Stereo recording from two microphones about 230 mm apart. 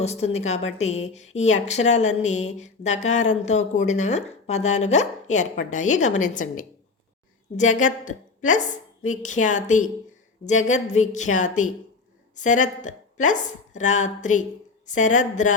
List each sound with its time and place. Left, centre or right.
0.0 s a woman's voice: left